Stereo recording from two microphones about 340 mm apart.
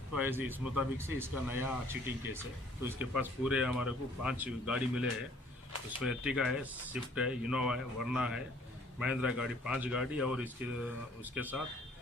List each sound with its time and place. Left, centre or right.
0.1 s a man's voice: centre